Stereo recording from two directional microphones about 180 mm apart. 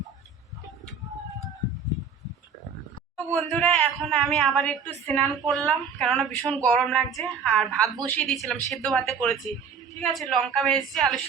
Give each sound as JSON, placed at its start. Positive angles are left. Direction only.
{"t": 3.3, "sound": "a man's voice", "side_deg": 5}